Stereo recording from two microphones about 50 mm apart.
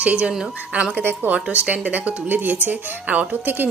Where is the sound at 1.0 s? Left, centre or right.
Right.